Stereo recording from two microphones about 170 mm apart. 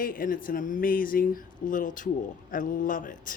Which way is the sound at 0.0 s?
55° left (ahead or behind).